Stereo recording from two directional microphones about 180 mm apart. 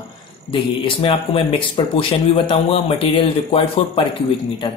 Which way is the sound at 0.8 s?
30° left (ahead or behind).